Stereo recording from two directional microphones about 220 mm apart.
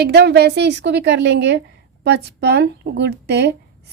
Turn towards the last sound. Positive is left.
turn(degrees=-50)  # may be behind; listen again after turning